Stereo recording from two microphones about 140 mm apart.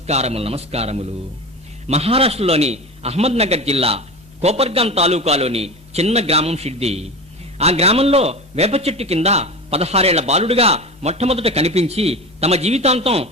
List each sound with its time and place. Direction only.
0.1 s a man's voice: 50° right (ahead or behind)